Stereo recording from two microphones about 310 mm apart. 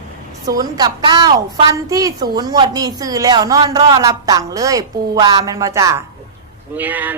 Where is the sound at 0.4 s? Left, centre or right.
Centre.